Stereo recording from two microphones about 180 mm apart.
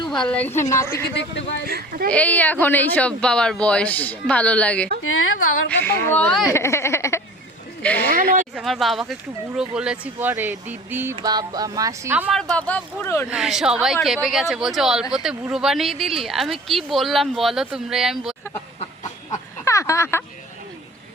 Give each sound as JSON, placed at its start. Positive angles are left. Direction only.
{"t": 0.1, "sound": "speech", "side_deg": 5}
{"t": 1.1, "sound": "a man's voice", "side_deg": 75}
{"t": 1.6, "sound": "speech", "side_deg": -55}
{"t": 2.0, "sound": "speech", "side_deg": 10}
{"t": 5.0, "sound": "speech", "side_deg": 90}
{"t": 5.6, "sound": "speech", "side_deg": 10}
{"t": 8.1, "sound": "speech", "side_deg": -50}
{"t": 8.5, "sound": "speech", "side_deg": 0}
{"t": 12.3, "sound": "speech", "side_deg": 5}
{"t": 13.3, "sound": "speech", "side_deg": -5}
{"t": 19.3, "sound": "a sound", "side_deg": 15}